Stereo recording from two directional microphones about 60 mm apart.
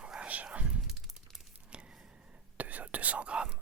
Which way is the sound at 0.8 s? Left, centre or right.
Centre.